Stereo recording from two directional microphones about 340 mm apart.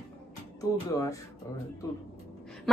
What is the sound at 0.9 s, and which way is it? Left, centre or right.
Speech, centre.